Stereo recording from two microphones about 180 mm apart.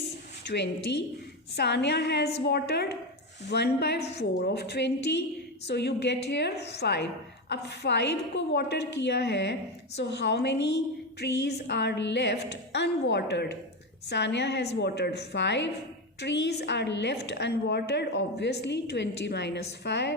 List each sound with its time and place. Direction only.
0.4 s a woman's voice: 70° left (ahead or behind)